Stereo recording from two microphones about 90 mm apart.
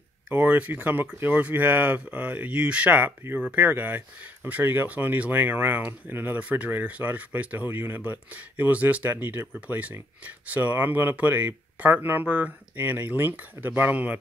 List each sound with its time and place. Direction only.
0.3 s speech: 20° right (ahead or behind)